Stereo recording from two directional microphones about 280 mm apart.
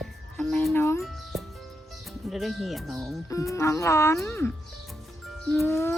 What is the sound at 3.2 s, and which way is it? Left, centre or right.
Speech, centre.